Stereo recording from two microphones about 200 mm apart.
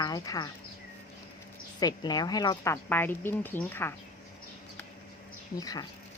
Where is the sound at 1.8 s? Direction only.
20° left (ahead or behind).